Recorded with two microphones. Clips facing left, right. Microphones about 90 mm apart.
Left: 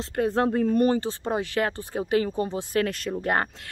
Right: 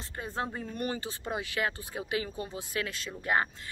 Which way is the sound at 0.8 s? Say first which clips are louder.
Left 11 dB; 35° left (ahead or behind).